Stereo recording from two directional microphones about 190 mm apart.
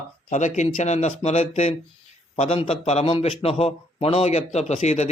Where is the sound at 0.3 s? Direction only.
40° left (ahead or behind).